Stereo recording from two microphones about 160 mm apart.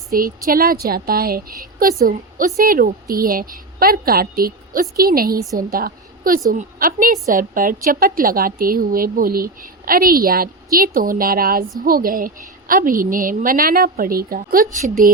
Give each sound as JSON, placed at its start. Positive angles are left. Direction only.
{"t": 0.1, "sound": "a woman's voice", "side_deg": -65}